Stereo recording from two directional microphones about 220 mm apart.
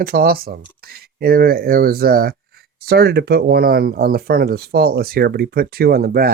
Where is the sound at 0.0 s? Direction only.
40° right (ahead or behind).